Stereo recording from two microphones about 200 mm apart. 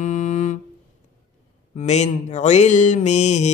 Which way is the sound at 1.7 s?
35° left (ahead or behind).